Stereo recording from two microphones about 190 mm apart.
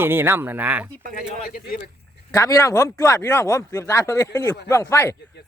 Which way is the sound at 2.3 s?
15° left (ahead or behind).